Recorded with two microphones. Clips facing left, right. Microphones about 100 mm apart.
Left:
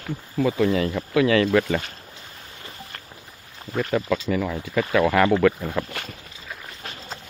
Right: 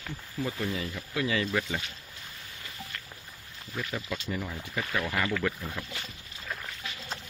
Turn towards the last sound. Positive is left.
turn(degrees=45)  # may be behind; listen again after turning